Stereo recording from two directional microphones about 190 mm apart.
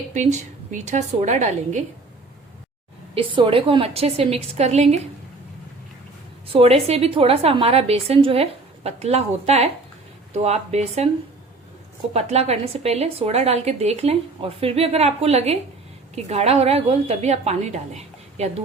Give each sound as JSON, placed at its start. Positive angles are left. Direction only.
{"t": 0.1, "sound": "a woman's voice", "side_deg": -40}
{"t": 3.2, "sound": "a woman's voice", "side_deg": -25}
{"t": 6.5, "sound": "a woman's voice", "side_deg": -30}
{"t": 12.1, "sound": "a woman's voice", "side_deg": -35}